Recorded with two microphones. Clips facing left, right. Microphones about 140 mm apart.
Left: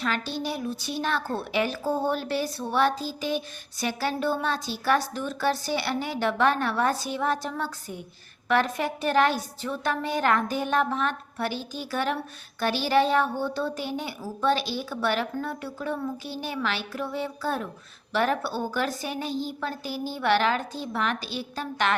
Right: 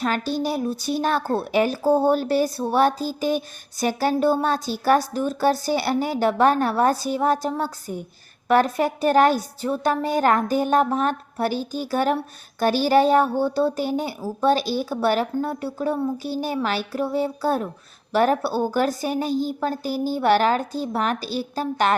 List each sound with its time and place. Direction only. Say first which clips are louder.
0.0 s a woman's voice: right 6 dB; 40° right (ahead or behind)